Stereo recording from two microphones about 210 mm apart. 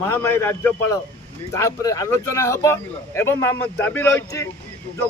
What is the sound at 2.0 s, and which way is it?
Speech, 15° left (ahead or behind).